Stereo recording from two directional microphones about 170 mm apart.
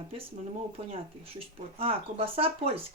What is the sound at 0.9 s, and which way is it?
Speech, 35° right (ahead or behind).